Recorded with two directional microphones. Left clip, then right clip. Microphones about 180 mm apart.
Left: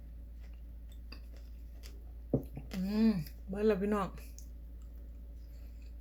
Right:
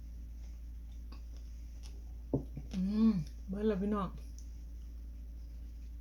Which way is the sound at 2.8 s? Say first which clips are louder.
Even; 15° right (ahead or behind).